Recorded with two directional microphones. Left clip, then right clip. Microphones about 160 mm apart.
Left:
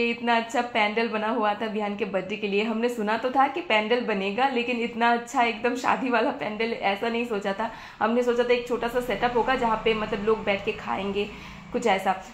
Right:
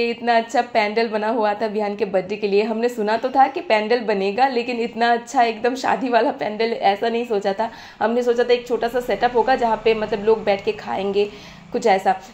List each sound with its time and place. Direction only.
0.0 s a woman's voice: 25° right (ahead or behind)